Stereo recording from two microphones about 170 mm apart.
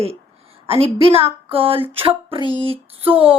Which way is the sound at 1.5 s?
35° right (ahead or behind).